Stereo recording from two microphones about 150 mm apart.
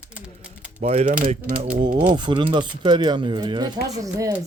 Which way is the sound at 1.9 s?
35° right (ahead or behind).